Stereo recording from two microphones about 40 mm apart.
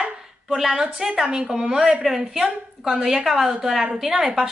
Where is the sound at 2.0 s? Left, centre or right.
Centre.